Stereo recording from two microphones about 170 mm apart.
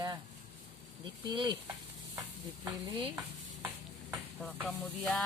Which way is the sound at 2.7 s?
25° right (ahead or behind).